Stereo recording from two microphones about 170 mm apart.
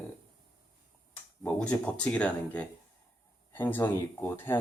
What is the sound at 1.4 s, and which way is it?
Speech, 10° left (ahead or behind).